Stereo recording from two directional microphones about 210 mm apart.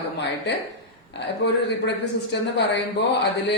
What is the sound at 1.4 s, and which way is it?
A woman's voice, 55° left (ahead or behind).